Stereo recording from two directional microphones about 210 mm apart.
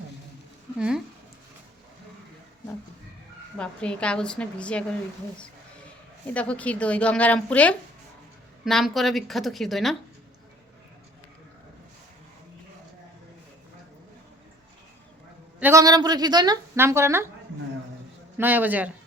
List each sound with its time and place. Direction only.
0.8 s a woman's voice: 5° right (ahead or behind)
3.6 s a woman's voice: 5° left (ahead or behind)
6.2 s a woman's voice: 5° left (ahead or behind)
15.6 s a woman's voice: 15° right (ahead or behind)
18.3 s a woman's voice: 10° right (ahead or behind)